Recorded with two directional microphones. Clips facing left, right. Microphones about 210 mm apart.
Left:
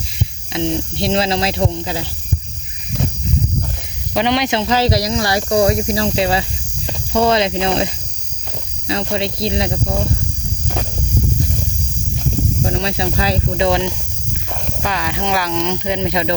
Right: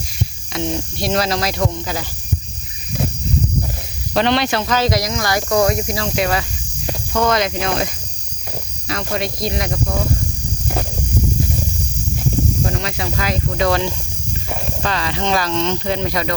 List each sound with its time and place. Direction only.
0.5 s speech: 25° left (ahead or behind)
4.1 s speech: 15° left (ahead or behind)
12.6 s speech: 30° left (ahead or behind)